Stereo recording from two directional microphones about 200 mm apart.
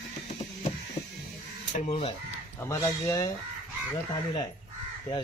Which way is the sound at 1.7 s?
40° left (ahead or behind).